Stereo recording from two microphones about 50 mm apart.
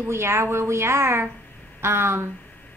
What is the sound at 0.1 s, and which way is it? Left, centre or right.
A woman's voice, right.